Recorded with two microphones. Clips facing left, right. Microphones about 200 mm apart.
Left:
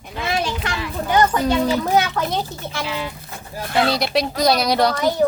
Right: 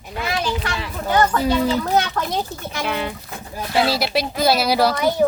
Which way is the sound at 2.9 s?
60° right (ahead or behind).